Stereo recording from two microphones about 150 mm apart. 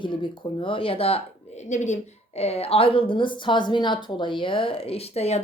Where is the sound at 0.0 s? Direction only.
30° left (ahead or behind).